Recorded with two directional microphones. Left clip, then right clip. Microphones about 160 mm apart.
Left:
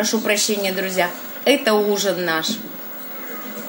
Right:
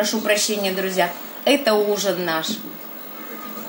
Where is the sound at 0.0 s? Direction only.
30° left (ahead or behind).